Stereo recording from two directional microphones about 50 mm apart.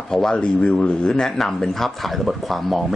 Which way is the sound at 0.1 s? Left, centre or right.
Centre.